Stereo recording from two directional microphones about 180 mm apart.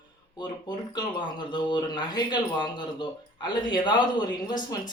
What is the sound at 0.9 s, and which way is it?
Speech, 25° left (ahead or behind).